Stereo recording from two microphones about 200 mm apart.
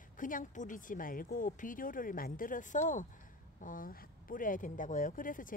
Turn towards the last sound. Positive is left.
turn(degrees=40)  # may be behind; listen again after turning